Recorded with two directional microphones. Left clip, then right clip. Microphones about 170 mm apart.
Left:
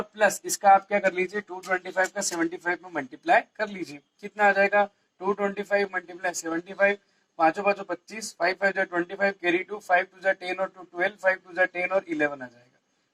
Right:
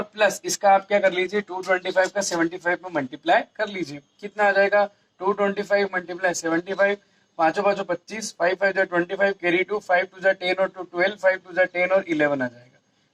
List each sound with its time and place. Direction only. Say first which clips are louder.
0.0 s a man's voice: right 2 dB; 25° right (ahead or behind)